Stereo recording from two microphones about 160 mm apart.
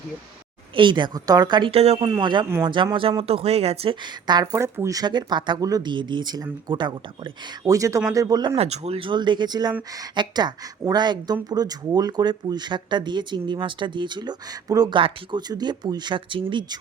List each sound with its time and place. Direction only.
0.8 s speech: 30° right (ahead or behind)
2.0 s speech: 25° right (ahead or behind)
8.5 s speech: 40° right (ahead or behind)